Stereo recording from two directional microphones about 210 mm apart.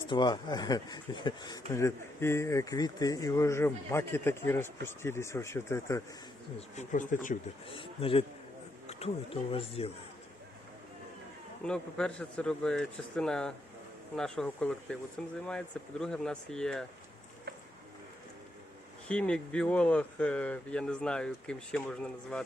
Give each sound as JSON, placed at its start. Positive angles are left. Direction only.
{"t": 0.1, "sound": "speech", "side_deg": 20}
{"t": 6.6, "sound": "speech", "side_deg": 35}
{"t": 7.7, "sound": "speech", "side_deg": 25}
{"t": 11.6, "sound": "speech", "side_deg": 5}
{"t": 19.0, "sound": "speech", "side_deg": 5}